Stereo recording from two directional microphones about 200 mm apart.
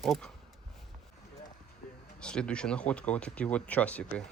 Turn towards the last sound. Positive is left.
turn(degrees=5)  # may be behind; listen again after turning